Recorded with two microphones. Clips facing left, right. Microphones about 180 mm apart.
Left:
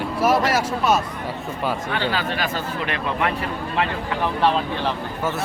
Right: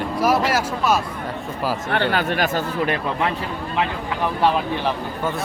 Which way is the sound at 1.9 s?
55° right (ahead or behind).